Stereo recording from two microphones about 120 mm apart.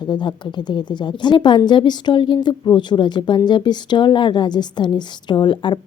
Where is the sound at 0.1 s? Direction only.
40° left (ahead or behind).